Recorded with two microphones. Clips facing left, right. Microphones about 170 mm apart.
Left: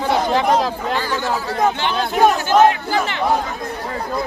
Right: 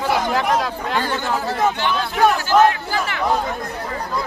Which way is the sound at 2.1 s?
20° left (ahead or behind).